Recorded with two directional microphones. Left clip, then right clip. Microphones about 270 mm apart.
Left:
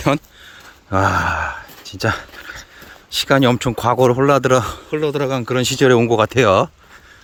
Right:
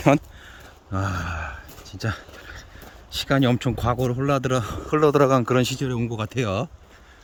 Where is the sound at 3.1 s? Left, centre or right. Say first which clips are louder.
Left 7 dB; centre.